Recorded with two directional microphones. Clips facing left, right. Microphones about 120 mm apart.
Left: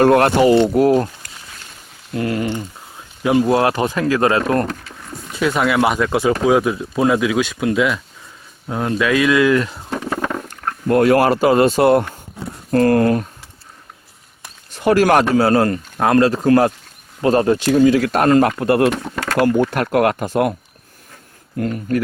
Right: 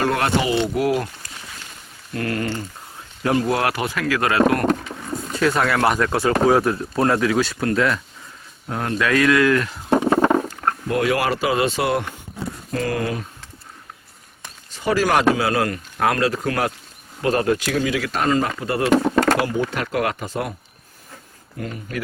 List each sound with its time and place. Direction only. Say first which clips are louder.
0.0 s speech: left 8 dB; 50° left (ahead or behind)
2.1 s speech: left 4 dB; 20° left (ahead or behind)
5.4 s speech: left 3 dB; 5° left (ahead or behind)
10.0 s stomach rumble: right 5 dB; 20° right (ahead or behind)
10.8 s speech: left 9 dB; 45° left (ahead or behind)
14.7 s speech: left 6 dB; 60° left (ahead or behind)
15.4 s speech: left 6 dB; 35° left (ahead or behind); by 18.9 s 60° left (ahead or behind)
18.9 s a sound: right 9 dB; 90° right
19.4 s speech: left 7 dB; 55° left (ahead or behind)
21.6 s speech: left 9 dB; 45° left (ahead or behind)